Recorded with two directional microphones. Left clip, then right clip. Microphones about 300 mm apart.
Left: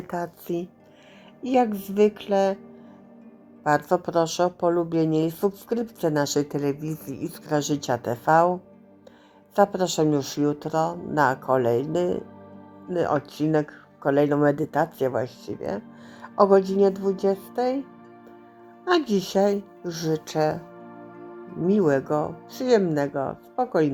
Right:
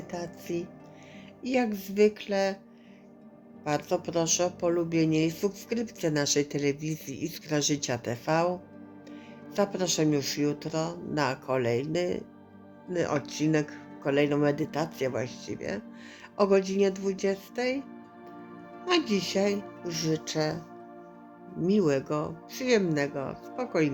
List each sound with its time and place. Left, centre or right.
0.5 s speech: centre
3.6 s speech: centre
9.6 s speech: centre
18.9 s speech: centre
21.6 s speech: centre